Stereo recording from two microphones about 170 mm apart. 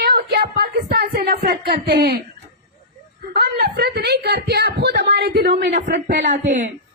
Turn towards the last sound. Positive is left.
turn(degrees=-50)  # may be behind; listen again after turning